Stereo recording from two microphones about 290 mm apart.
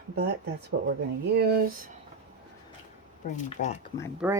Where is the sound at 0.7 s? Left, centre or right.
Right.